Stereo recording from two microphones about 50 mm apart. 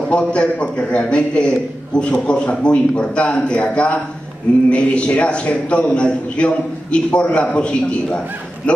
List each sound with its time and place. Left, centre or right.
0.1 s a man's voice: left